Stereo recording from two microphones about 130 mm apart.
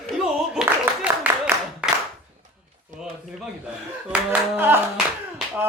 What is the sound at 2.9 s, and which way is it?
Speech, 75° right (ahead or behind).